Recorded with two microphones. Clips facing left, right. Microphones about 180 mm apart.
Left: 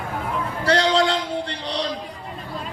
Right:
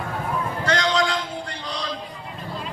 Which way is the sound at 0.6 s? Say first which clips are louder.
Left 4 dB; 30° left (ahead or behind).